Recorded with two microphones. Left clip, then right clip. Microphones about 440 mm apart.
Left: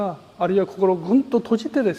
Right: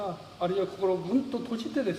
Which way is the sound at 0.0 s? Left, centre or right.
Left.